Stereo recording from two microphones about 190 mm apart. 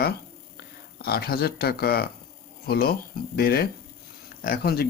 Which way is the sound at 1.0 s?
55° left (ahead or behind).